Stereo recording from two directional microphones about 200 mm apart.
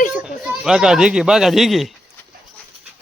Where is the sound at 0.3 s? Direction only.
5° right (ahead or behind).